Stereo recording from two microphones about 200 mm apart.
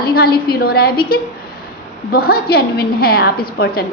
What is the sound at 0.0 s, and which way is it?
A woman's voice, 50° left (ahead or behind).